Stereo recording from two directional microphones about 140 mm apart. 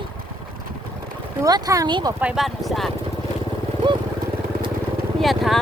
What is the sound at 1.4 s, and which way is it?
Speech, 25° right (ahead or behind).